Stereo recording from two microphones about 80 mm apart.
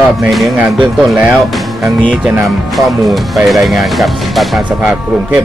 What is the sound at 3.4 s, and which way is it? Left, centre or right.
Speech, centre.